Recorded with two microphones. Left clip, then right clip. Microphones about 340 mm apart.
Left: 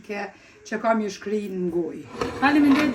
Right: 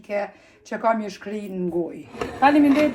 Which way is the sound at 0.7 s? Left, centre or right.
Centre.